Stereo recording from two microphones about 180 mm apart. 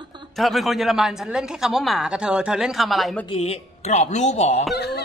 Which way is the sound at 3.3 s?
35° left (ahead or behind).